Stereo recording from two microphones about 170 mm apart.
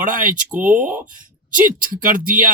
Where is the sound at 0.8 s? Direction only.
10° right (ahead or behind).